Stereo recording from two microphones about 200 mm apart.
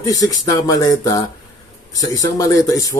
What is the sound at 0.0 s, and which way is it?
Speech, 20° left (ahead or behind).